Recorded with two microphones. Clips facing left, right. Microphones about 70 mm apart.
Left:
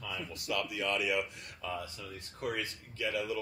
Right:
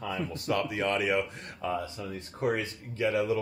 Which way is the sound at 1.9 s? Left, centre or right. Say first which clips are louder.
Right 8 dB; right.